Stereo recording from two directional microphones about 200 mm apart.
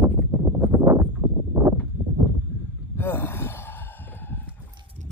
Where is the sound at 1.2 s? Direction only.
20° right (ahead or behind).